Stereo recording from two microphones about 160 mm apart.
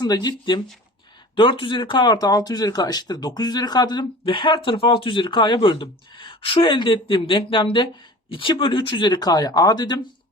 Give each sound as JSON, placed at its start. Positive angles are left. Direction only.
{"t": 0.0, "sound": "speech", "side_deg": 25}